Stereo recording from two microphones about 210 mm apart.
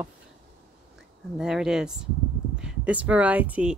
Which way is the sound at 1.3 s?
Centre (ahead or behind).